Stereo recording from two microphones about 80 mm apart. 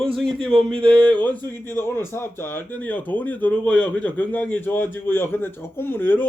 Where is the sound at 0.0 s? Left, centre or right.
Centre.